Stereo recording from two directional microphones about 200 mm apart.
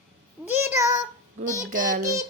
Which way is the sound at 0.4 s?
10° right (ahead or behind).